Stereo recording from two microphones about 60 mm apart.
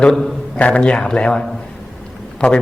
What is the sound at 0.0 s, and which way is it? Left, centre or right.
A man's voice, centre.